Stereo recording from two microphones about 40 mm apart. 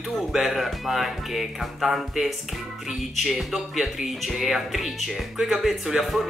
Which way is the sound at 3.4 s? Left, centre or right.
Centre.